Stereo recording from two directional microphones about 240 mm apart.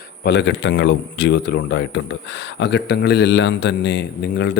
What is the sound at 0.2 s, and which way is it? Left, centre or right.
Speech, left.